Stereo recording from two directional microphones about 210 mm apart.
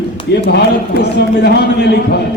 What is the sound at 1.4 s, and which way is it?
Speech, 55° left (ahead or behind).